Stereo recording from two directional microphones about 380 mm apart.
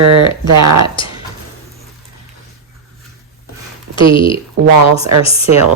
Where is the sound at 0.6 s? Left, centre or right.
Right.